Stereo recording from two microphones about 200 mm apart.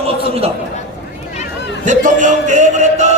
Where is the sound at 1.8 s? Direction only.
40° right (ahead or behind).